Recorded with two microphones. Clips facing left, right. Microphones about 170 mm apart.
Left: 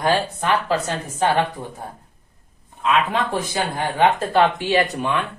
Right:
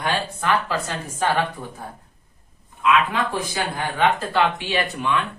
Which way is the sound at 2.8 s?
35° left (ahead or behind).